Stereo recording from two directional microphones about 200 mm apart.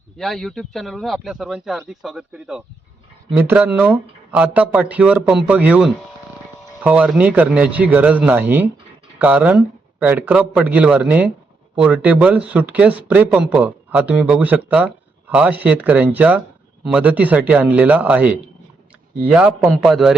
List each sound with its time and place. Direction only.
0.2 s speech: centre (ahead or behind)